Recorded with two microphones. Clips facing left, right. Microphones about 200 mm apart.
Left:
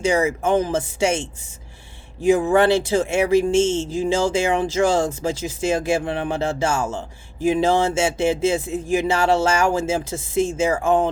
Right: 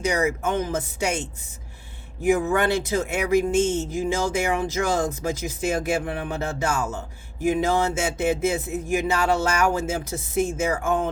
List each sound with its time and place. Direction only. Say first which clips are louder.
0.0 s speech: left 4 dB; 30° left (ahead or behind)
2.2 s speech: left 5 dB; 30° left (ahead or behind)